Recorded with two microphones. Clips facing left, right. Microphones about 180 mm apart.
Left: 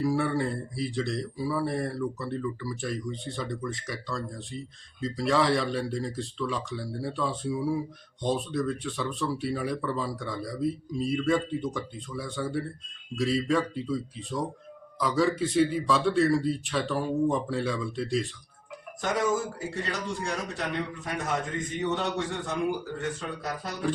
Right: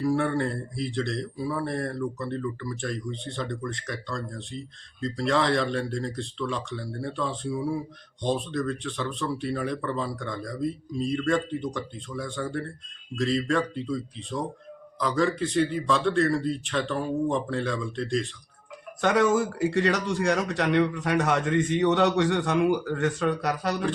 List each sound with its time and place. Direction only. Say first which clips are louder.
0.0 s speech: right 2 dB; 5° left (ahead or behind)
19.0 s speech: right 5 dB; 70° right (ahead or behind)